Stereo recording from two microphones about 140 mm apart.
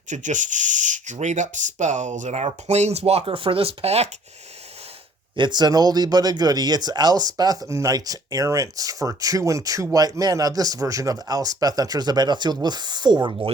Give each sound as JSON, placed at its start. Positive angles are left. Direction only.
{"t": 0.1, "sound": "speech", "side_deg": -60}
{"t": 5.4, "sound": "speech", "side_deg": -30}